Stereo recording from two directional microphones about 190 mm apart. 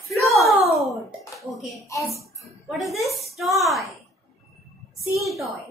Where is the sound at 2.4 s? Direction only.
Centre (ahead or behind).